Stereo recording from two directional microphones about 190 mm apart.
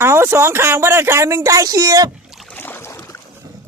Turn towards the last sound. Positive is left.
turn(degrees=15)  # may be behind; listen again after turning